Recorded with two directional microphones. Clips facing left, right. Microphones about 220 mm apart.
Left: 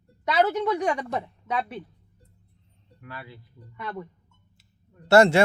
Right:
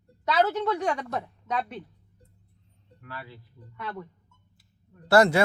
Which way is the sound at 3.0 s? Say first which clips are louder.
Left 1 dB; 15° left (ahead or behind).